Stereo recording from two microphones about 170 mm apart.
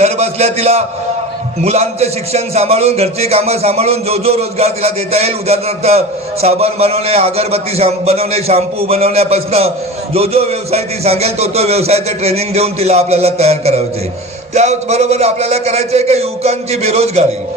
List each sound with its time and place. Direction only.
0.0 s a man's voice: 40° right (ahead or behind)